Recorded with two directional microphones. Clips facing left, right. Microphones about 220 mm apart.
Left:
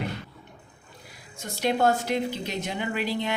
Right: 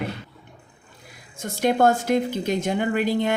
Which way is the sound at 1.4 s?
50° right (ahead or behind).